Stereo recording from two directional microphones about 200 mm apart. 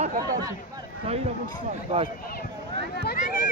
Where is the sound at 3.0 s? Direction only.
45° left (ahead or behind).